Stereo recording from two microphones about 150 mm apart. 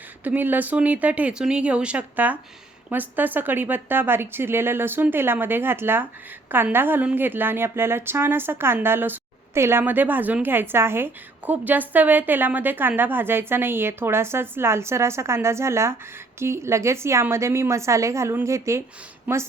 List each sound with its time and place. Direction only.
0.3 s a woman's voice: 10° right (ahead or behind)